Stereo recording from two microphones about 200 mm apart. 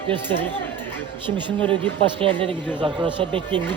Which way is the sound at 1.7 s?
25° right (ahead or behind).